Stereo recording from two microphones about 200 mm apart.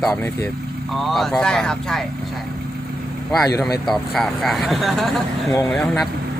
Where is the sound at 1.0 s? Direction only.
Centre (ahead or behind).